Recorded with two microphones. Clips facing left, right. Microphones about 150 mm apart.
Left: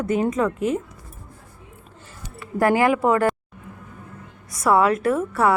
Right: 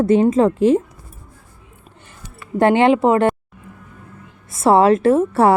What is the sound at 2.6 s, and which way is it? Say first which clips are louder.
Speech: right 5 dB; 25° right (ahead or behind).